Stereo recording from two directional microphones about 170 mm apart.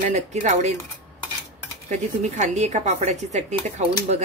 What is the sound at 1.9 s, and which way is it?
Speech, 45° right (ahead or behind).